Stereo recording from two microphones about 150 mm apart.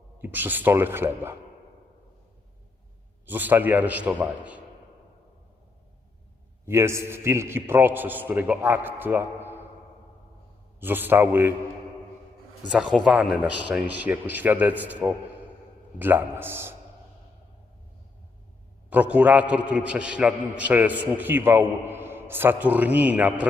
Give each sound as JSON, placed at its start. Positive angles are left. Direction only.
{"t": 0.2, "sound": "a man's voice", "side_deg": -15}
{"t": 3.2, "sound": "a man's voice", "side_deg": -10}
{"t": 6.7, "sound": "a man's voice", "side_deg": -15}
{"t": 10.8, "sound": "a man's voice", "side_deg": -15}
{"t": 13.1, "sound": "a man's voice", "side_deg": -10}
{"t": 18.9, "sound": "a man's voice", "side_deg": -10}